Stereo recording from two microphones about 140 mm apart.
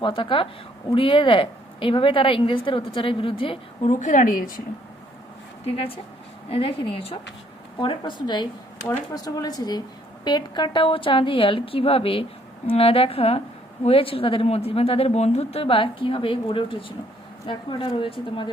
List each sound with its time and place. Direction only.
0.0 s a woman's voice: 35° left (ahead or behind)
4.0 s speech: 65° left (ahead or behind)
5.6 s a woman's voice: 40° left (ahead or behind)